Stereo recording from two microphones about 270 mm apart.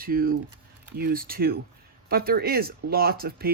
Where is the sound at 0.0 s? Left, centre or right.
Right.